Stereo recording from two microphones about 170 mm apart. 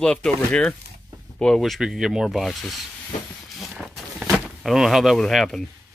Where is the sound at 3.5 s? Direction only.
Centre (ahead or behind).